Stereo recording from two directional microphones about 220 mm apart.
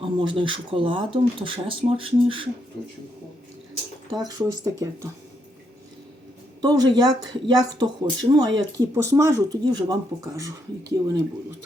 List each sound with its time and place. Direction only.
0.0 s speech: 20° right (ahead or behind)
4.2 s speech: 15° right (ahead or behind)
6.6 s speech: 20° right (ahead or behind)